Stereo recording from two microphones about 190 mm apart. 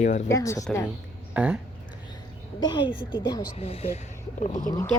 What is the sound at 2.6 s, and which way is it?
A woman's voice, 25° left (ahead or behind).